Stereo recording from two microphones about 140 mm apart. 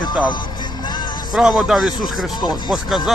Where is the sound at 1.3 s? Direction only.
5° right (ahead or behind).